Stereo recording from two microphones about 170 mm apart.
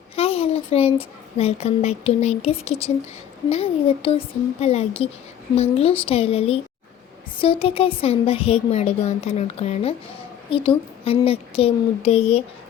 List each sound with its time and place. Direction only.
0.2 s speech: 35° left (ahead or behind)